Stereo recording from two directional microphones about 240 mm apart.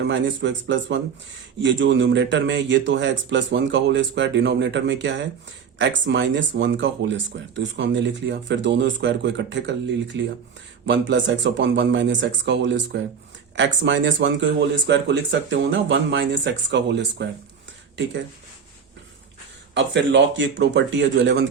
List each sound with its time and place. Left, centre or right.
0.0 s speech: right
19.7 s speech: right